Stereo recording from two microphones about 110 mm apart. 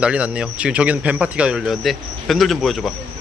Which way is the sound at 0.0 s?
10° right (ahead or behind).